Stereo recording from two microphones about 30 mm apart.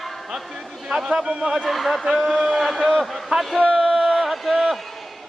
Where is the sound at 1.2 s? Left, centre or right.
Right.